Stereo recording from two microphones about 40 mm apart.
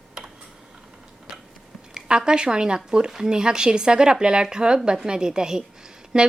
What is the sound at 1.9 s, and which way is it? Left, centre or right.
A woman's voice, right.